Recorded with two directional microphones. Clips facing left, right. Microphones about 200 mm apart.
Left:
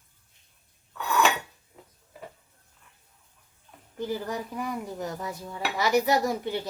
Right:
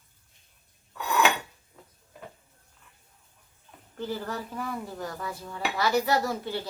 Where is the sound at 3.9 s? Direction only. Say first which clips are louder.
Left 2 dB; 15° left (ahead or behind).